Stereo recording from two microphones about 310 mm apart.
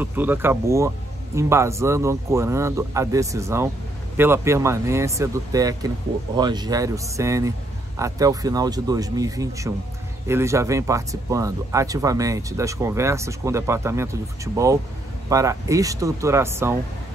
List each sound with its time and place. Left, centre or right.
0.0 s speech: centre